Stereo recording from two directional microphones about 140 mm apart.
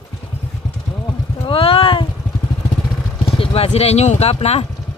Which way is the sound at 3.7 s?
50° left (ahead or behind).